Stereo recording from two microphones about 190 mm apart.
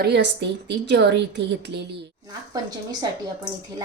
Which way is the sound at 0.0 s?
65° right (ahead or behind).